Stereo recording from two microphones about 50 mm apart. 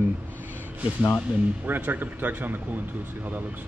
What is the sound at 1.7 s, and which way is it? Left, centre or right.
Speech, right.